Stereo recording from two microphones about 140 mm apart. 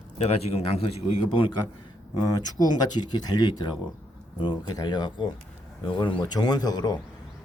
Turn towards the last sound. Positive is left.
turn(degrees=30)  # may be behind; listen again after turning